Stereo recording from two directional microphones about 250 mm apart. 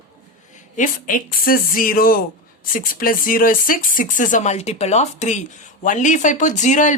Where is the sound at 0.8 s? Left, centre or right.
Left.